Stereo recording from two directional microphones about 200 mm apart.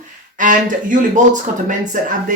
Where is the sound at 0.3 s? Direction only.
40° right (ahead or behind).